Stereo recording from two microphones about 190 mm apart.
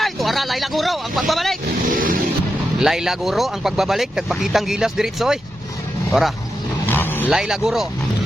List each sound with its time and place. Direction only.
0.0 s a sound: centre (ahead or behind)
1.3 s speech: centre (ahead or behind)
1.9 s vehicle: 45° right (ahead or behind)
2.8 s speech: centre (ahead or behind)
6.8 s vehicle: 10° left (ahead or behind)
7.3 s speech: 5° right (ahead or behind)